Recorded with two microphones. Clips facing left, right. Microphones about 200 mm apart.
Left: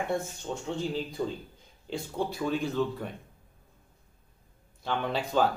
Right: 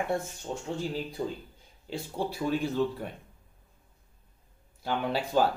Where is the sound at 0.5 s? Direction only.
20° right (ahead or behind).